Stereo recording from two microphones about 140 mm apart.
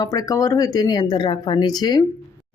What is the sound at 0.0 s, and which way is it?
Speech, 25° left (ahead or behind).